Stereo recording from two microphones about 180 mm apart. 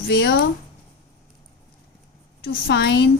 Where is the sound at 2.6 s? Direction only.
70° left (ahead or behind).